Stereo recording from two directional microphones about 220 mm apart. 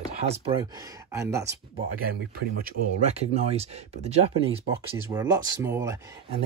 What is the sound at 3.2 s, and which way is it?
Speech, 30° right (ahead or behind).